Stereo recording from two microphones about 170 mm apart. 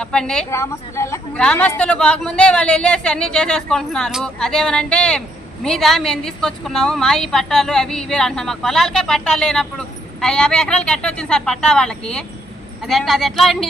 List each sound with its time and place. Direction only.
0.0 s a woman's voice: 5° left (ahead or behind)
0.5 s a woman's voice: 15° left (ahead or behind); by 13.7 s centre (ahead or behind)